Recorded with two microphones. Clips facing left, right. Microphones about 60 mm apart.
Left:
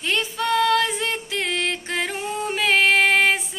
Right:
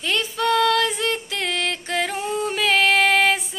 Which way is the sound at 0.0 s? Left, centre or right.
Left.